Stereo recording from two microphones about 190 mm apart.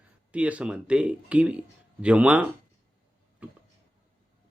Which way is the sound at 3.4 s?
5° right (ahead or behind).